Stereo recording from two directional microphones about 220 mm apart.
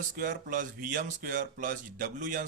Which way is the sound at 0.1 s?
40° right (ahead or behind).